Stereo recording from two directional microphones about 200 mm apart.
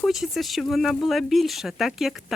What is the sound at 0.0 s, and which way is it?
Speech, centre (ahead or behind).